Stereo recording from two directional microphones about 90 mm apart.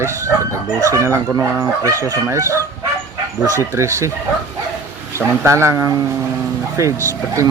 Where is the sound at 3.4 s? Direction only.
35° left (ahead or behind).